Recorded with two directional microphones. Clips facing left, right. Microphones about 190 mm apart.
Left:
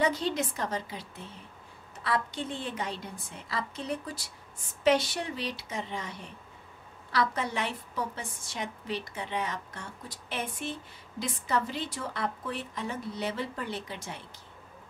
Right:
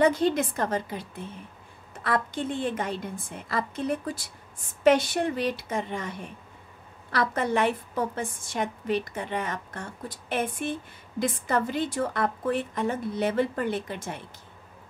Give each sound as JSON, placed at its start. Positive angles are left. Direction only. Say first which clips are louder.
{"t": 0.0, "sound": "a woman's voice", "louder": "right 6 dB", "side_deg": -50}